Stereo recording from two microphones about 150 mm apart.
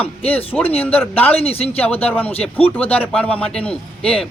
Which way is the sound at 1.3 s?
40° left (ahead or behind).